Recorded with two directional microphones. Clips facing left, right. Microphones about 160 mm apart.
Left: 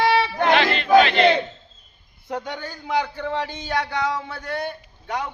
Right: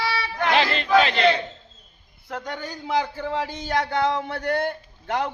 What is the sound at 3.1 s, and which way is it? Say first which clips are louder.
Speech: left 1 dB; 5° right (ahead or behind).